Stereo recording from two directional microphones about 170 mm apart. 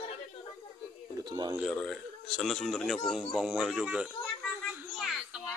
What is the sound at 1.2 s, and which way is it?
Speech, 20° right (ahead or behind).